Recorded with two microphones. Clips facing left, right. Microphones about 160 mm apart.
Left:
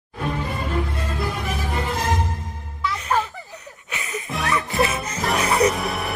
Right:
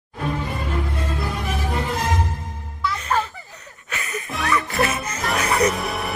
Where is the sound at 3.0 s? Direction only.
10° left (ahead or behind).